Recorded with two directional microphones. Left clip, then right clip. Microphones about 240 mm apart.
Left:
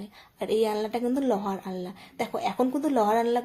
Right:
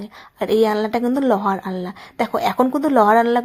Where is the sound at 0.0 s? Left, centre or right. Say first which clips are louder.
Right 9 dB; right.